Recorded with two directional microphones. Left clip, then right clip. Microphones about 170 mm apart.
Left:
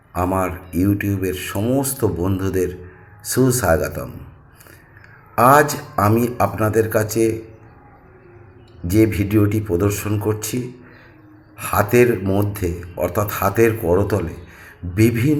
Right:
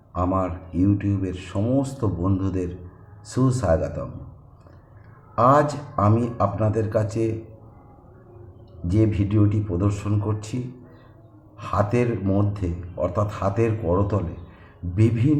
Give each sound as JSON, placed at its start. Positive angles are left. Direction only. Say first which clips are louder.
{"t": 0.1, "sound": "speech", "louder": "left 4 dB", "side_deg": 15}
{"t": 5.4, "sound": "speech", "louder": "left 5 dB", "side_deg": 15}
{"t": 8.9, "sound": "speech", "louder": "left 6 dB", "side_deg": 15}
{"t": 11.6, "sound": "speech", "louder": "left 7 dB", "side_deg": 15}
{"t": 12.2, "sound": "speech", "louder": "left 4 dB", "side_deg": 35}
{"t": 12.5, "sound": "speech", "louder": "left 5 dB", "side_deg": 15}